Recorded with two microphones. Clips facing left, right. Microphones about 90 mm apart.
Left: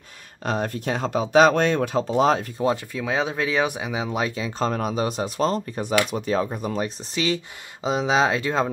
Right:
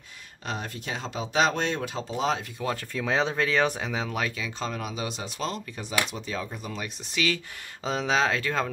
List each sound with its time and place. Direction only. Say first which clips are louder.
0.5 s speech: left 8 dB; 45° left (ahead or behind)
2.9 s speech: left 1 dB; 5° left (ahead or behind)
4.4 s speech: left 8 dB; 40° left (ahead or behind)
7.2 s speech: left 3 dB; 25° left (ahead or behind)